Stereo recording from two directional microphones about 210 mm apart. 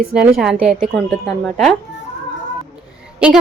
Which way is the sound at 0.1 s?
5° right (ahead or behind).